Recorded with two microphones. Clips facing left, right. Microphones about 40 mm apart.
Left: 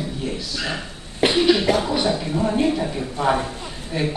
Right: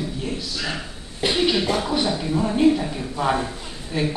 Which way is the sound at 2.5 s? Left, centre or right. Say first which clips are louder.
Right 3 dB; centre.